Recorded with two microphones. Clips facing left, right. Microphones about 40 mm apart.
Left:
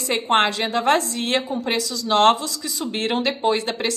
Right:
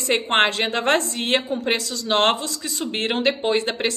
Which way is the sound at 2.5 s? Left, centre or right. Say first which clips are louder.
Even; right.